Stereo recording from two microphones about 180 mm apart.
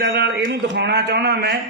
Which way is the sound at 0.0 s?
65° right (ahead or behind).